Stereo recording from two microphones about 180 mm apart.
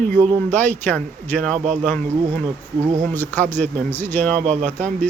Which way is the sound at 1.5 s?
40° right (ahead or behind).